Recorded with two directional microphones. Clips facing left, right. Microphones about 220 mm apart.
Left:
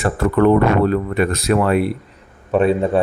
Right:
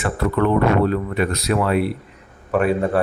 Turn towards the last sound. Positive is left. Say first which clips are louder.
# left 3 dB
turn(degrees=20)  # may be behind; listen again after turning